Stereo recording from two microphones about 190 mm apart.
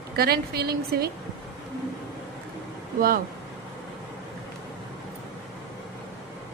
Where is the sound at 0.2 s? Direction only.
55° right (ahead or behind).